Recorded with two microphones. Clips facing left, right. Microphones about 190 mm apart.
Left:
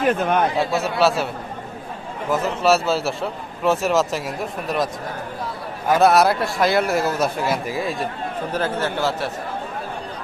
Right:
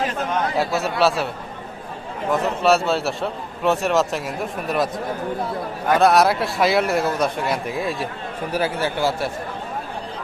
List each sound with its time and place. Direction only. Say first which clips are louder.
0.0 s speech: left 5 dB; 55° left (ahead or behind)
0.5 s a man's voice: left 1 dB; centre (ahead or behind)
2.3 s a man's voice: even; centre (ahead or behind)
5.9 s a man's voice: even; centre (ahead or behind)
8.5 s speech: right 1 dB; 10° right (ahead or behind)